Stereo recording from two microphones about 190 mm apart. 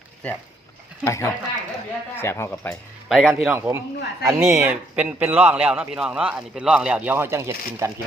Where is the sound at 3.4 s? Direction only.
10° right (ahead or behind).